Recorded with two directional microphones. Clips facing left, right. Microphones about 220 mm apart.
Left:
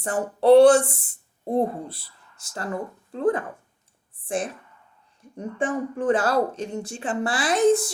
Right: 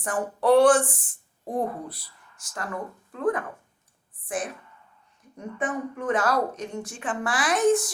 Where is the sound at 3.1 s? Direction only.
30° left (ahead or behind).